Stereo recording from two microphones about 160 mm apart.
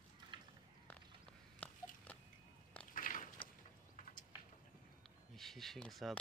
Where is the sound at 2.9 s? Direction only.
60° left (ahead or behind).